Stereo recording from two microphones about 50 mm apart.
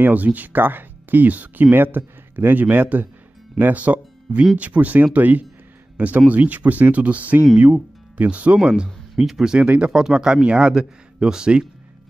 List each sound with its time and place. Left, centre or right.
0.0 s speech: right
9.1 s speech: centre
9.5 s speech: right
9.8 s speech: centre